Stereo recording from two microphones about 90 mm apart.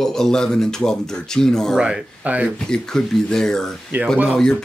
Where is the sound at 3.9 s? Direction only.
20° right (ahead or behind).